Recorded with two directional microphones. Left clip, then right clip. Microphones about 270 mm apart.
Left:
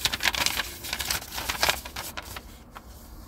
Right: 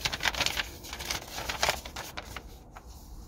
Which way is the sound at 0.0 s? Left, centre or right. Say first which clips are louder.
Left 4 dB; centre.